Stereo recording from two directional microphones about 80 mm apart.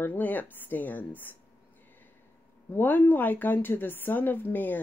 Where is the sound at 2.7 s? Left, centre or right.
Left.